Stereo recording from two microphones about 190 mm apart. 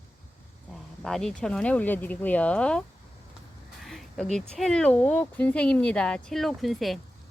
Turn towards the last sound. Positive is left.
turn(degrees=0)  # may be behind; listen again after turning